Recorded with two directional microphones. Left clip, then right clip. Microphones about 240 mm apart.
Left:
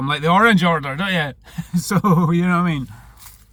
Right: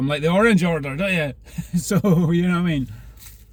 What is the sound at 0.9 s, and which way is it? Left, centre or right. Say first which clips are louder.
Speech: left 1 dB; left.